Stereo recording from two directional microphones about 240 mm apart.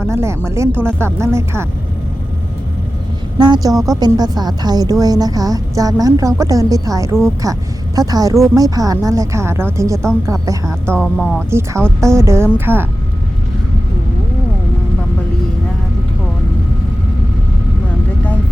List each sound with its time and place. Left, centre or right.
0.1 s a woman's voice: centre
3.3 s a woman's voice: centre
10.9 s speech: centre
11.9 s a woman's voice: centre